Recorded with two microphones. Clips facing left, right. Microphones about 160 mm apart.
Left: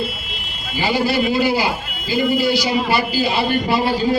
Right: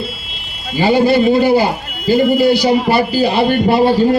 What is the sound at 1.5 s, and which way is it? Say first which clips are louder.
A man's voice: right 7 dB; 50° right (ahead or behind).